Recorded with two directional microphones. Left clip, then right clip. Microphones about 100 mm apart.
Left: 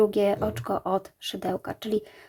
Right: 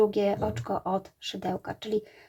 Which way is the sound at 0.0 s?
35° left (ahead or behind).